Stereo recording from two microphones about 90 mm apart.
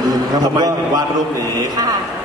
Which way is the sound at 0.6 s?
45° right (ahead or behind).